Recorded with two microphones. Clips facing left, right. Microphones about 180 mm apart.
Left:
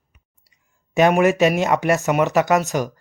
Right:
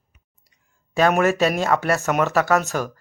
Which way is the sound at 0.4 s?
15° left (ahead or behind).